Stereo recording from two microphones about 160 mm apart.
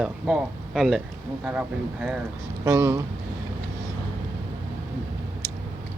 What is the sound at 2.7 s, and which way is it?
Speech, 20° right (ahead or behind).